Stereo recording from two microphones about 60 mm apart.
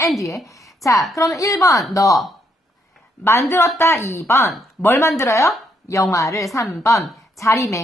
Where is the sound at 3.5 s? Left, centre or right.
Left.